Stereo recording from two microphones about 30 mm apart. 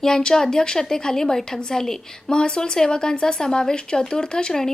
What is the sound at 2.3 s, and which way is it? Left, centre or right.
A woman's voice, left.